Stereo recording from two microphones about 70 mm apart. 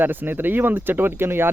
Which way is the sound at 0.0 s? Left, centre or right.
Right.